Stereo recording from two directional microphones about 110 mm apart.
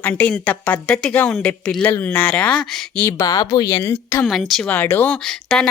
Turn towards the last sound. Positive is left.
turn(degrees=5)  # may be behind; listen again after turning